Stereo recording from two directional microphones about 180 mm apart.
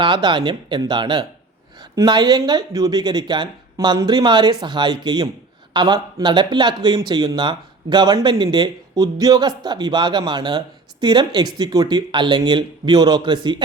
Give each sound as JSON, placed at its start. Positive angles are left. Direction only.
{"t": 0.0, "sound": "speech", "side_deg": -25}